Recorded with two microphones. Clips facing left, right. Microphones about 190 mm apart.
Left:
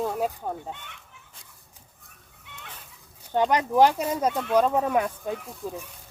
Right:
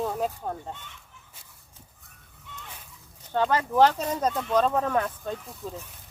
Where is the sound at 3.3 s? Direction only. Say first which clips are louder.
Left 2 dB; 15° left (ahead or behind).